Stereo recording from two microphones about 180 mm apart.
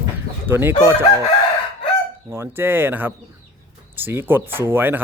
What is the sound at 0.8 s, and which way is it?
Speech, 15° right (ahead or behind).